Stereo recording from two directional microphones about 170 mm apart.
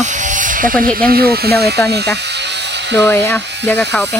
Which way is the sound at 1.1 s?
65° right (ahead or behind).